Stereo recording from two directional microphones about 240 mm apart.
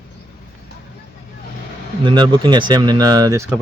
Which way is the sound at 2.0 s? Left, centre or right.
Centre.